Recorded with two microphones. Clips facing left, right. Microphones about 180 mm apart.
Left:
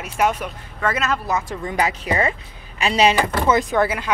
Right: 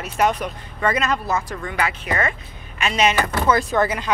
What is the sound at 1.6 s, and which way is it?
Speech, 35° left (ahead or behind).